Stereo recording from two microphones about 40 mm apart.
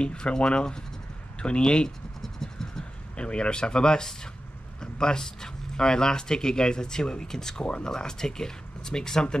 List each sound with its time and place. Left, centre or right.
0.0 s speech: left
2.2 s a sound: centre
3.2 s speech: left
7.6 s speech: left